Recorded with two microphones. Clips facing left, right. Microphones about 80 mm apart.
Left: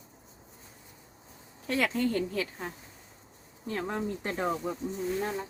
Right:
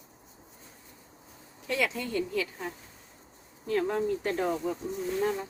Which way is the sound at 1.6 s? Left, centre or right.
Left.